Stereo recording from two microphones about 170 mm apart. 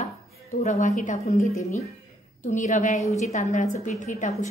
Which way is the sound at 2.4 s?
45° left (ahead or behind).